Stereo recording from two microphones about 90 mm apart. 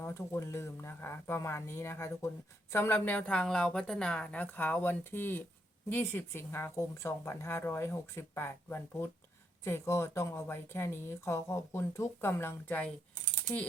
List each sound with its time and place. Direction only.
0.0 s a woman's voice: 30° left (ahead or behind)